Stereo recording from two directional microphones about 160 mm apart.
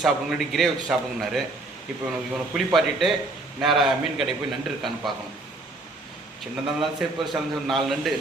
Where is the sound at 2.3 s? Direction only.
Centre (ahead or behind).